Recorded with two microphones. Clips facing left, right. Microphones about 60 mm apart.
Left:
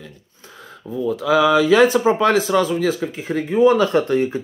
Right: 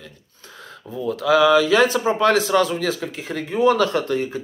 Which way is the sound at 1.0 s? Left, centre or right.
Centre.